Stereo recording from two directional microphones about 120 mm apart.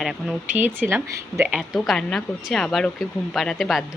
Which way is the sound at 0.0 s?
5° right (ahead or behind).